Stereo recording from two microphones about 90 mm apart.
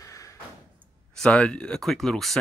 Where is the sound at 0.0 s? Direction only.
35° left (ahead or behind).